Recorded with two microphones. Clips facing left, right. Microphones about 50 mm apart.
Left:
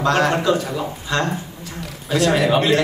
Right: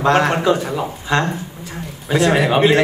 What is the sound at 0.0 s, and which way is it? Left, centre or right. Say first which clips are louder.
A man's voice: right 2 dB; right.